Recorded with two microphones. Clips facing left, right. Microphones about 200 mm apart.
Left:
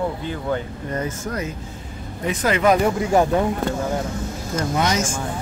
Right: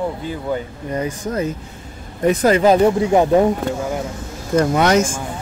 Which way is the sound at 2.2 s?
40° right (ahead or behind).